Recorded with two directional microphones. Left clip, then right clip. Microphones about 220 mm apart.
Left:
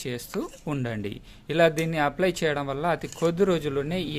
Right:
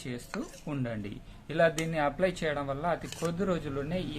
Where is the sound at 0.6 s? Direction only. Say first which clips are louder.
Left 5 dB; 45° left (ahead or behind).